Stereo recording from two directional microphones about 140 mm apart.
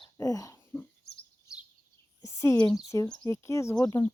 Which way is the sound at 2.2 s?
25° left (ahead or behind).